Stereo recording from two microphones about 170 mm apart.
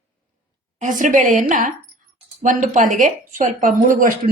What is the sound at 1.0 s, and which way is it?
A woman's voice, 50° right (ahead or behind).